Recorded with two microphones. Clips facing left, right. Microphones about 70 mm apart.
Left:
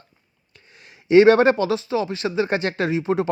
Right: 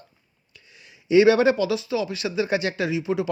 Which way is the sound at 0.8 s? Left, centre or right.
Left.